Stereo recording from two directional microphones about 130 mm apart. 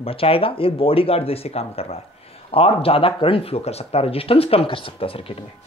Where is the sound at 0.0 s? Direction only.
45° left (ahead or behind).